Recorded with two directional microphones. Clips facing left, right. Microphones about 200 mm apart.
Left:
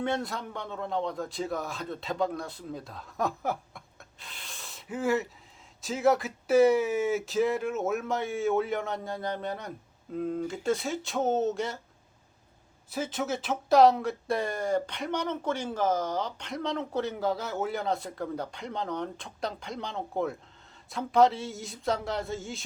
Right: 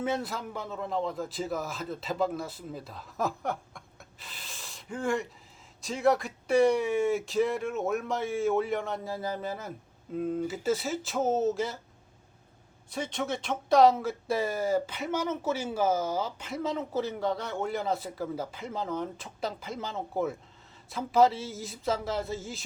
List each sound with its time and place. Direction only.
0.0 s speech: centre (ahead or behind)
12.9 s speech: 5° left (ahead or behind)